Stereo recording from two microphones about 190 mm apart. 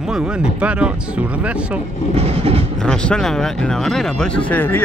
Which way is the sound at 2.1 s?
35° right (ahead or behind).